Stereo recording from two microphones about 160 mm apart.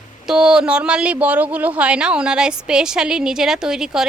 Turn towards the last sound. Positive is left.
turn(degrees=-5)  # may be behind; listen again after turning